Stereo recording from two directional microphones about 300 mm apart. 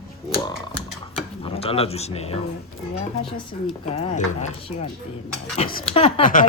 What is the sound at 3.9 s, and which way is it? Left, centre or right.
Speech, left.